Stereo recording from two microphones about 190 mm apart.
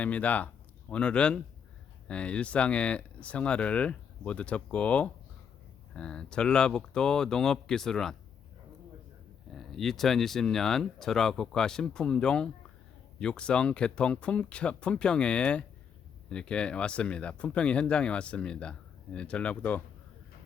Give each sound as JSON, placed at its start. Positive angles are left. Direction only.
{"t": 0.0, "sound": "speech", "side_deg": 10}
{"t": 9.5, "sound": "speech", "side_deg": 0}